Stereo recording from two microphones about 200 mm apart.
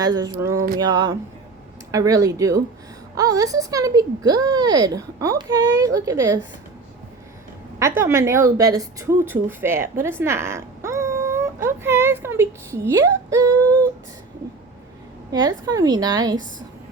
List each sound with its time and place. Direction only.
0.0 s a woman's voice: 20° right (ahead or behind)
7.8 s speech: 15° right (ahead or behind)
15.3 s a woman's voice: 20° right (ahead or behind)